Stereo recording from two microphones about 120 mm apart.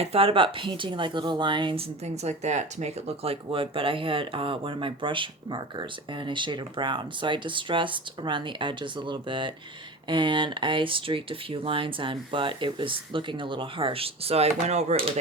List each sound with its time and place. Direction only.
0.0 s speech: 55° right (ahead or behind)
2.0 s speech: 70° right (ahead or behind)